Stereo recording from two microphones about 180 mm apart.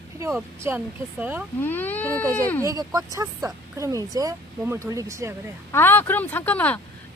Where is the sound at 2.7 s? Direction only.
20° right (ahead or behind).